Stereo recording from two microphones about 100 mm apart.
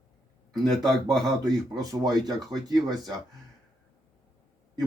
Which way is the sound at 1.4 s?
40° right (ahead or behind).